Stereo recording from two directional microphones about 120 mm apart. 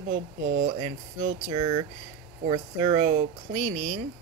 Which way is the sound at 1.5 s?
40° right (ahead or behind).